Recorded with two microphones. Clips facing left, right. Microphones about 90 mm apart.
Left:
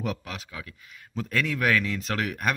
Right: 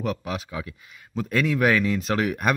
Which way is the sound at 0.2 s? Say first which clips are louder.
Right 8 dB; 15° right (ahead or behind).